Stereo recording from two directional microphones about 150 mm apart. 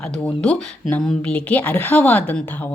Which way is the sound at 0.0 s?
10° left (ahead or behind).